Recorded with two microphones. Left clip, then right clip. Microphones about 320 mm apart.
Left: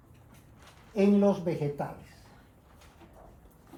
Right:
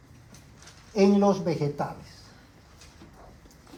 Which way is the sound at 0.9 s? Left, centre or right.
Centre.